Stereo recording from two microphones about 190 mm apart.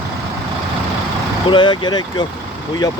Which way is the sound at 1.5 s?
25° left (ahead or behind).